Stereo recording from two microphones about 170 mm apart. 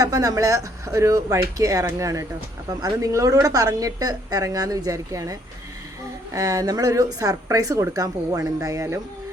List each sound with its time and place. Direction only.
0.0 s a woman's voice: 20° right (ahead or behind)